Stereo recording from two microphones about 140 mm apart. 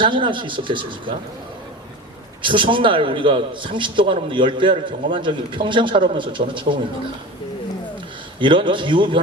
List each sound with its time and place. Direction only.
0.0 s a man's voice: 35° right (ahead or behind)
2.4 s a man's voice: 35° right (ahead or behind)
8.4 s a man's voice: 35° right (ahead or behind)